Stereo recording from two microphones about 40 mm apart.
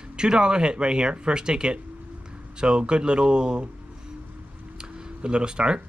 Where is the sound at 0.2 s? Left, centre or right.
Right.